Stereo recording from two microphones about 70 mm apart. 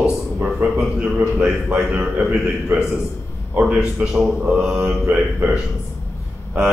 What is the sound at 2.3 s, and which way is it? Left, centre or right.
A man's voice, centre.